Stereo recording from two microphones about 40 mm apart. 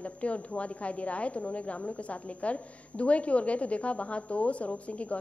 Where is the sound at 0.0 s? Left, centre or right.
Left.